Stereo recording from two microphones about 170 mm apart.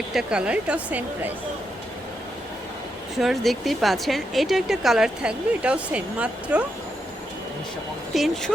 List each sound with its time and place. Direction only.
0.1 s speech: 5° right (ahead or behind)
3.2 s speech: centre (ahead or behind)
8.1 s speech: centre (ahead or behind)